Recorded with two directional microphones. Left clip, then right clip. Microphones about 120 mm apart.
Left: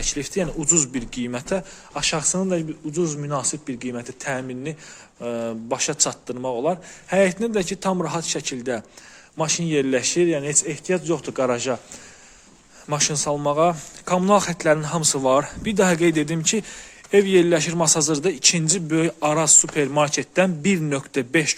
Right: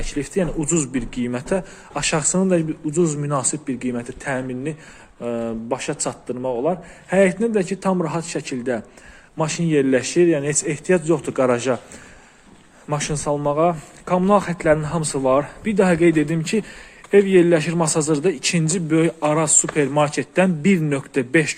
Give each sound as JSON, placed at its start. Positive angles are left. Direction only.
{"t": 0.0, "sound": "a man's voice", "side_deg": 30}
{"t": 2.0, "sound": "speech", "side_deg": 0}
{"t": 3.2, "sound": "speech", "side_deg": 10}
{"t": 3.7, "sound": "a man's voice", "side_deg": 25}
{"t": 7.1, "sound": "a man's voice", "side_deg": 30}
{"t": 10.5, "sound": "speech", "side_deg": 5}
{"t": 12.9, "sound": "speech", "side_deg": 30}
{"t": 15.2, "sound": "speech", "side_deg": 55}